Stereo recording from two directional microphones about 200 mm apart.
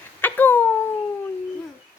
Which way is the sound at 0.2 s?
10° left (ahead or behind).